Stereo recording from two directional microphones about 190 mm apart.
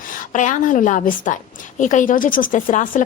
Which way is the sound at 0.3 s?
40° left (ahead or behind).